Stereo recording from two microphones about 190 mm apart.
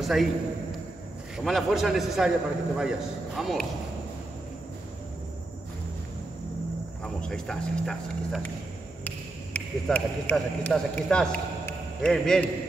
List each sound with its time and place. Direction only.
0.0 s a man's voice: centre (ahead or behind)
7.0 s speech: 5° left (ahead or behind)